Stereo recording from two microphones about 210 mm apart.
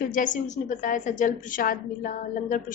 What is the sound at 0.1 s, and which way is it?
A woman's voice, 40° left (ahead or behind).